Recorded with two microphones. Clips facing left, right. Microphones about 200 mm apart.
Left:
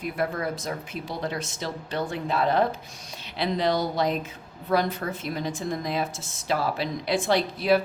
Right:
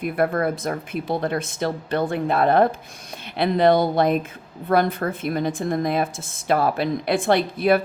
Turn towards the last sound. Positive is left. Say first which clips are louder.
# right 3 dB
turn(degrees=-55)  # may be behind; listen again after turning